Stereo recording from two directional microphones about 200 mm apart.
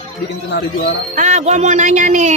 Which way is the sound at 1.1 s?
35° right (ahead or behind).